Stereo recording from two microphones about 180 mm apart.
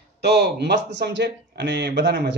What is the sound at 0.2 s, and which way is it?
Speech, 65° right (ahead or behind).